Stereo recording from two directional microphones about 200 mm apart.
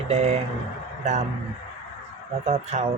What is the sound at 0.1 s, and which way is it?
Speech, 35° right (ahead or behind).